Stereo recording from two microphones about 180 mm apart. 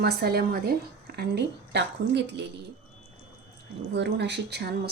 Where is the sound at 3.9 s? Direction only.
70° right (ahead or behind).